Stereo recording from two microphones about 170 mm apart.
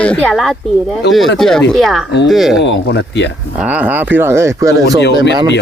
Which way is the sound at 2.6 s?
85° left.